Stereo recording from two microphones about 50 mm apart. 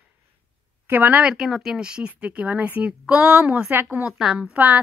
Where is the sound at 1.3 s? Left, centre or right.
Centre.